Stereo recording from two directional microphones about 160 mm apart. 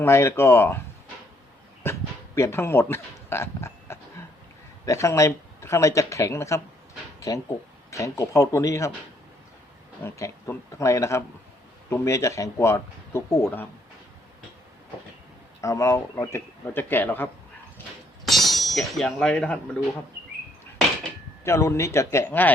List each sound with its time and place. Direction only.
0.0 s speech: 15° left (ahead or behind)
1.8 s speech: 15° left (ahead or behind)
10.0 s speech: 20° left (ahead or behind)
15.6 s speech: 20° left (ahead or behind)
18.3 s speech: centre (ahead or behind)
21.4 s speech: 15° left (ahead or behind)